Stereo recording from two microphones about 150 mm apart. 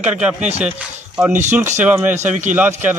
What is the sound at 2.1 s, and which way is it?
Speech, 50° right (ahead or behind).